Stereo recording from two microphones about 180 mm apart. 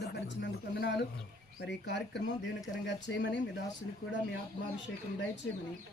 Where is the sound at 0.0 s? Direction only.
65° left (ahead or behind).